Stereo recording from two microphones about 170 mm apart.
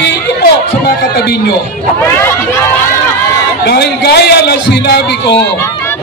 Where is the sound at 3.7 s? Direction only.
70° left (ahead or behind).